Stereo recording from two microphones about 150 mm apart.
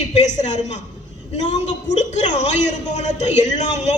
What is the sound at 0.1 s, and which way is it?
A woman's voice, 50° left (ahead or behind).